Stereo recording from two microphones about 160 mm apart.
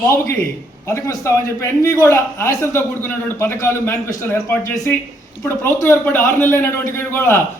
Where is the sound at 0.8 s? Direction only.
20° left (ahead or behind).